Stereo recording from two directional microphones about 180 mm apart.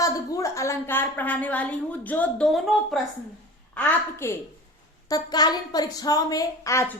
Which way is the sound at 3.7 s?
10° left (ahead or behind).